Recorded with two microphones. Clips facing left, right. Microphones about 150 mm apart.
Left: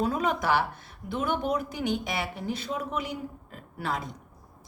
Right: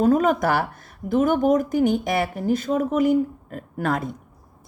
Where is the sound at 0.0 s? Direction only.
45° right (ahead or behind).